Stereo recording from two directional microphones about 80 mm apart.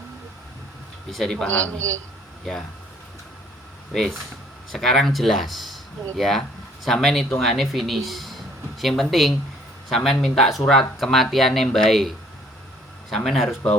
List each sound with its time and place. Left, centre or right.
1.1 s speech: centre
1.5 s a man's voice: centre
2.4 s speech: centre
3.9 s speech: centre